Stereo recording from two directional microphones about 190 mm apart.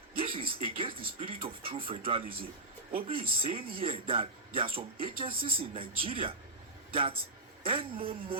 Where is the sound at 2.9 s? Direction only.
30° right (ahead or behind).